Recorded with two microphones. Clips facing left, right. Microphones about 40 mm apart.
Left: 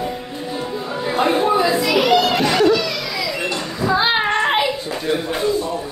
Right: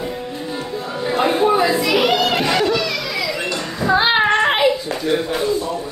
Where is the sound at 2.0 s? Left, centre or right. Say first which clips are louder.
Left 3 dB; right.